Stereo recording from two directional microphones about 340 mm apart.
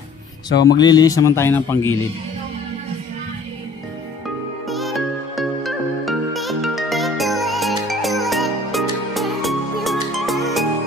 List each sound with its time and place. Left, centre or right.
0.5 s speech: left
0.7 s speech: centre
4.6 s music: centre